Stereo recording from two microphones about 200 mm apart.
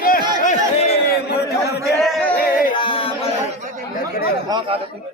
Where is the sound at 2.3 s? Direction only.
45° left (ahead or behind).